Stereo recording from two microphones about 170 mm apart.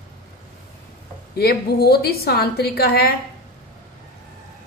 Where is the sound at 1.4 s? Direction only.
65° left (ahead or behind).